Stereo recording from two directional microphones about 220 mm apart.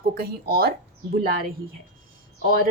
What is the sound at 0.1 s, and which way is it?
Speech, 45° right (ahead or behind).